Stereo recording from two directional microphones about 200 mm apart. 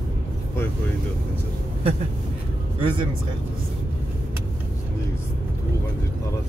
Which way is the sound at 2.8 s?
25° right (ahead or behind).